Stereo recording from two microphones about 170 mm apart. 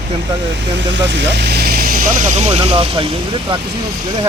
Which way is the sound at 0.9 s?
90° right.